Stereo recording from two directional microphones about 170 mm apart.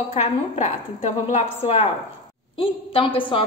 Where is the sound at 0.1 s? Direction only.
40° left (ahead or behind).